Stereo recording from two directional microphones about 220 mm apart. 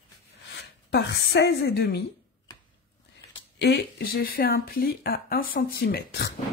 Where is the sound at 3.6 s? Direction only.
50° left (ahead or behind).